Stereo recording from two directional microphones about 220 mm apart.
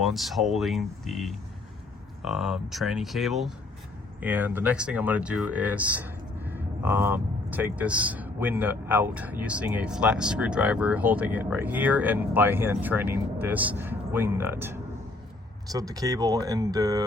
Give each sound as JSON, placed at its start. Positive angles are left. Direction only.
{"t": 0.0, "sound": "speech", "side_deg": 0}